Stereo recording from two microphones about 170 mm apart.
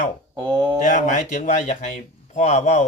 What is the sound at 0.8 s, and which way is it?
Speech, 50° left (ahead or behind).